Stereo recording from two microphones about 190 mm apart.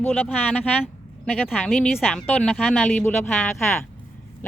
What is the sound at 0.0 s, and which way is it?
Speech, 10° left (ahead or behind).